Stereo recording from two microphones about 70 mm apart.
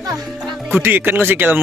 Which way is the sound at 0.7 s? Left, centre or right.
Right.